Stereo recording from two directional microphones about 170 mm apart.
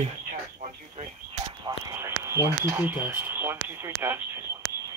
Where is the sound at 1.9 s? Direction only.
15° right (ahead or behind).